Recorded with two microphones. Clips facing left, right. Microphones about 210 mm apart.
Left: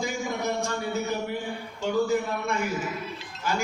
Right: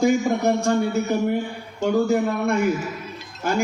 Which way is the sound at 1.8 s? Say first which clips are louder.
Right 6 dB; 55° right (ahead or behind).